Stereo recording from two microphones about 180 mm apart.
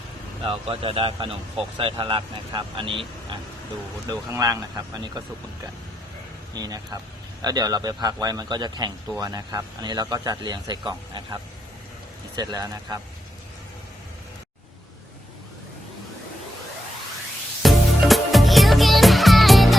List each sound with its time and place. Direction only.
0.4 s a man's voice: 30° right (ahead or behind)
4.1 s a man's voice: 20° right (ahead or behind)
6.5 s a man's voice: 20° right (ahead or behind)
12.4 s a man's voice: 20° right (ahead or behind)
17.6 s music: centre (ahead or behind)